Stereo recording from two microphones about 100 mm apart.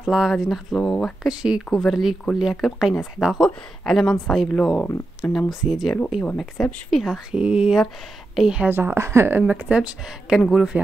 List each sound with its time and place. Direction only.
0.0 s speech: 5° right (ahead or behind)
1.2 s speech: 5° right (ahead or behind); by 4.8 s 10° left (ahead or behind)
5.5 s speech: 5° right (ahead or behind)
8.6 s a woman's voice: 20° right (ahead or behind)
9.4 s speech: 10° right (ahead or behind)